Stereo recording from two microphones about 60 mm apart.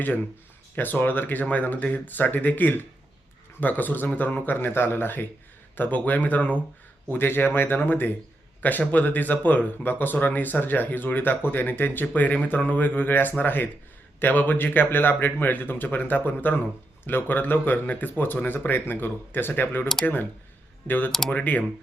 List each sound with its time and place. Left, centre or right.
0.8 s speech: left
7.1 s speech: left
21.1 s speech: centre
21.3 s speech: left